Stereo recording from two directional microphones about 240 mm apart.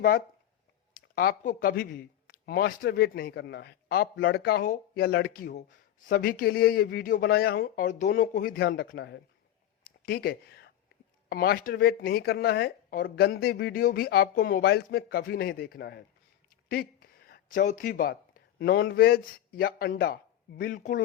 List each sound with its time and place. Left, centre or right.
0.9 s speech: left
9.8 s a sound: left
11.3 s speech: left